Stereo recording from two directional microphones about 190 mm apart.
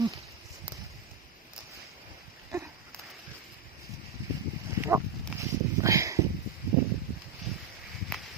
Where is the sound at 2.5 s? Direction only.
15° right (ahead or behind).